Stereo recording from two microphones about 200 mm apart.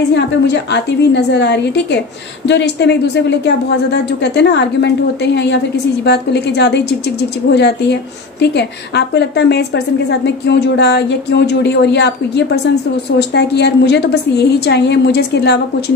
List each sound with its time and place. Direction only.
0.1 s a woman's voice: 60° left (ahead or behind)